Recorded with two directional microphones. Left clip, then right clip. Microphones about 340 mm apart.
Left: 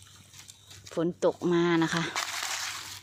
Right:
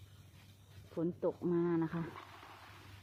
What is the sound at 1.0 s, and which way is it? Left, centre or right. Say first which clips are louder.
Speech: left 10 dB; centre.